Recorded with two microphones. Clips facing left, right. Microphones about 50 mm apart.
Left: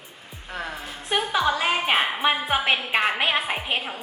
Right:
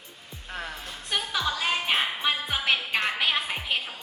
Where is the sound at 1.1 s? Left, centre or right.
Left.